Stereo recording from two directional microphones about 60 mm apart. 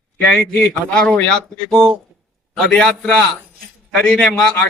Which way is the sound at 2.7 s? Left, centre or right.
Centre.